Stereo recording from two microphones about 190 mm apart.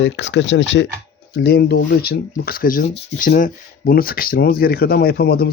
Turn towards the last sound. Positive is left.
turn(degrees=55)  # may be behind; listen again after turning